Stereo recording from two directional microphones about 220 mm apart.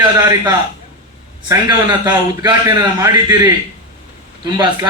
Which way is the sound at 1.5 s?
15° right (ahead or behind).